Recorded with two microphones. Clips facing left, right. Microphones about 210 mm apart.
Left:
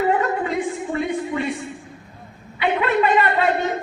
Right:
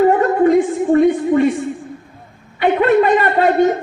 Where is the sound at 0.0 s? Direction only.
45° right (ahead or behind).